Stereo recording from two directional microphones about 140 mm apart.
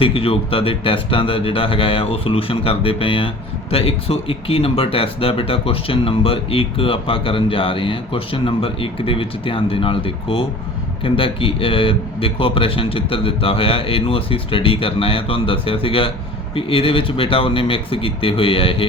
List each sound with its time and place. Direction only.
0.0 s a man's voice: 40° left (ahead or behind)